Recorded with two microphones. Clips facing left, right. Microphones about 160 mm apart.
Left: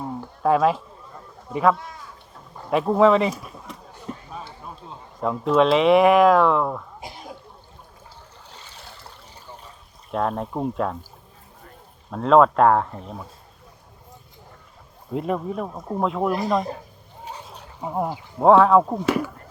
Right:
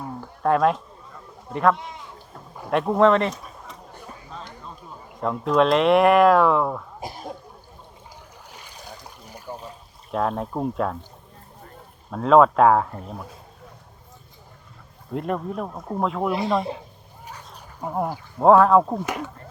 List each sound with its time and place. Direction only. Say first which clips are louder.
0.4 s speech: left 1 dB; centre (ahead or behind)
1.7 s speech: right 1 dB; 20° right (ahead or behind)
2.6 s speech: left 1 dB; centre (ahead or behind)
5.2 s speech: left 1 dB; centre (ahead or behind)
8.5 s a sound: right 3 dB; 15° right (ahead or behind)
9.5 s a sound: right 8 dB; 35° right (ahead or behind)
10.1 s speech: even; centre (ahead or behind)
12.1 s speech: even; centre (ahead or behind)
15.1 s speech: left 1 dB; centre (ahead or behind)
17.7 s speech: even; 5° left (ahead or behind)